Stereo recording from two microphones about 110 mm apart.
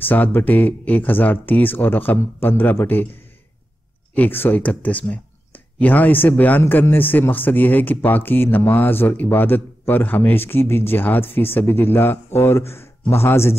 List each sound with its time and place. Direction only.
0.0 s speech: 15° left (ahead or behind)
4.1 s speech: 15° left (ahead or behind)